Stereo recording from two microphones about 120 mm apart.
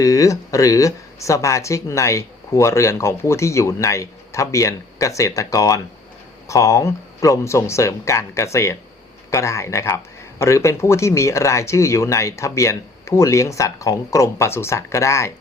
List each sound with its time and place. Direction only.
0.0 s speech: 25° left (ahead or behind)